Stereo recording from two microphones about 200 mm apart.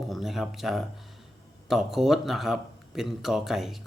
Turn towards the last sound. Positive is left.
turn(degrees=0)  # may be behind; listen again after turning